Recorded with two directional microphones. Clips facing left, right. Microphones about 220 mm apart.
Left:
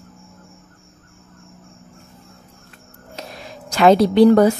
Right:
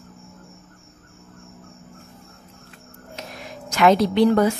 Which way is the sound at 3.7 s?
30° left (ahead or behind).